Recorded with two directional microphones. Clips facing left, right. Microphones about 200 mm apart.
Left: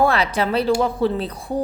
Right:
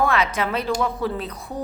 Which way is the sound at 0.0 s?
30° left (ahead or behind).